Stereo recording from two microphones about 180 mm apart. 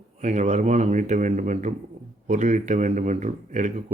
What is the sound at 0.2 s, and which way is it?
Speech, 40° right (ahead or behind).